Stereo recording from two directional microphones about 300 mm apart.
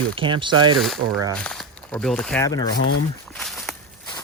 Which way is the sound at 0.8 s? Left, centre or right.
Centre.